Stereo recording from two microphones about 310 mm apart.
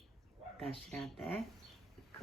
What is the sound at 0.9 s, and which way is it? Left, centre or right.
Speech, centre.